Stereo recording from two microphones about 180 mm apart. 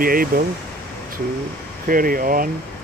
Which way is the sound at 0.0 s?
50° right (ahead or behind).